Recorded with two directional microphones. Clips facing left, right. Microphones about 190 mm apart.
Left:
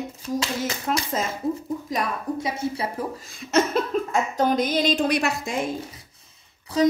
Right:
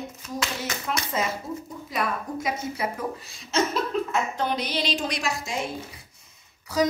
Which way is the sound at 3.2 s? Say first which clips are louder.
Left 5 dB; 55° left (ahead or behind).